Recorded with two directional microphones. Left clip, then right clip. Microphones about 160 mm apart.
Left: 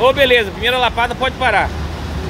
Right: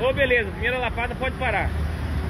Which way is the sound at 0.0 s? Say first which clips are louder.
Left 9 dB; 30° left (ahead or behind).